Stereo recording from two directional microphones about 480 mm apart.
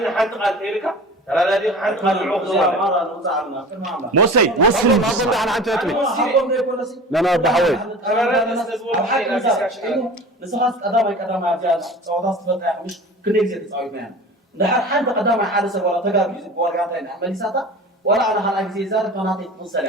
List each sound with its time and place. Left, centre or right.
0.0 s speech: centre
4.1 s speech: right
4.7 s speech: centre